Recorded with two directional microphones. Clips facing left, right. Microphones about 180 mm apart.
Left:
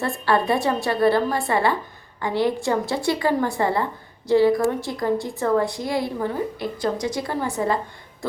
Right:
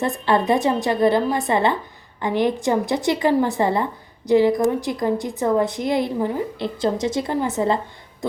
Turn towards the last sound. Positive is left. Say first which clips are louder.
# right 3 dB
turn(degrees=-25)  # may be behind; listen again after turning